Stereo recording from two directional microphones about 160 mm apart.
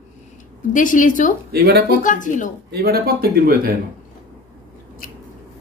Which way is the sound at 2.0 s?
55° left (ahead or behind).